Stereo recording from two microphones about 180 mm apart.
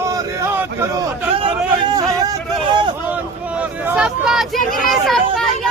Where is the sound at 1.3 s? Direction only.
25° right (ahead or behind).